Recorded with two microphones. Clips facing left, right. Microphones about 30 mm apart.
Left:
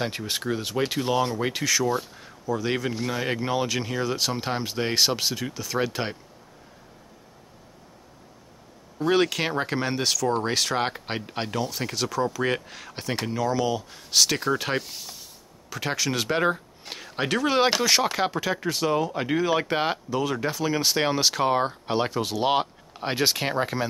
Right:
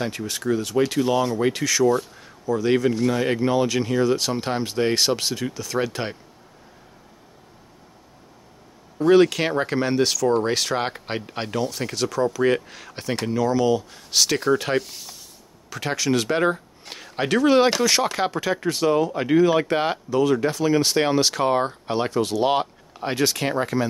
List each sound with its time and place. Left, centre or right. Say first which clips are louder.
0.3 s speech: right 4 dB; centre
8.9 s speech: right 6 dB; centre